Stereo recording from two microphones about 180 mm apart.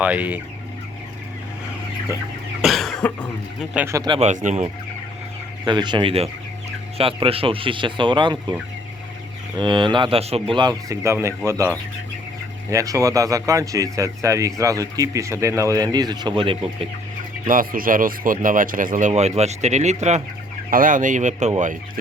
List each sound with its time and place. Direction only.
0.0 s speech: 10° right (ahead or behind)
2.6 s cough: centre (ahead or behind)
3.8 s speech: 15° right (ahead or behind)
4.2 s speech: 45° right (ahead or behind)
5.6 s speech: 25° right (ahead or behind)
9.6 s speech: 25° right (ahead or behind)
12.7 s speech: 20° right (ahead or behind)
17.5 s speech: 50° right (ahead or behind)
20.7 s speech: 50° right (ahead or behind)